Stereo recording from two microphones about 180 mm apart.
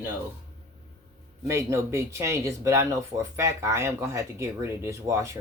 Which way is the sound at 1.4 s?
15° right (ahead or behind).